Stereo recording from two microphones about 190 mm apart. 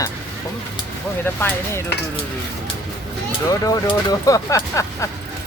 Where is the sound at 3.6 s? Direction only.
20° left (ahead or behind).